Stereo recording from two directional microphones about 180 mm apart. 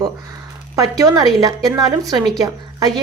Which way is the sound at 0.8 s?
20° right (ahead or behind).